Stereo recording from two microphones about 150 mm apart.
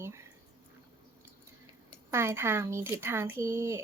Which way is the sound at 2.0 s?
15° right (ahead or behind).